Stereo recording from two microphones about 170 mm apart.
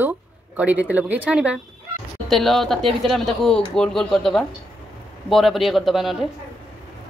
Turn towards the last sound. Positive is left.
turn(degrees=0)  # may be behind; listen again after turning